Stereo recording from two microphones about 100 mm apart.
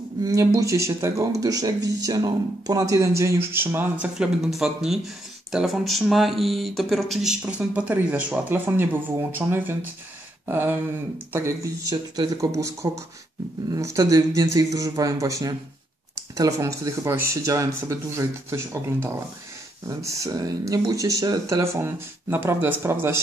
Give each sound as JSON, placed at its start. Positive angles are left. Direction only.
{"t": 0.2, "sound": "speech", "side_deg": -35}
{"t": 11.3, "sound": "speech", "side_deg": -30}
{"t": 19.9, "sound": "speech", "side_deg": -30}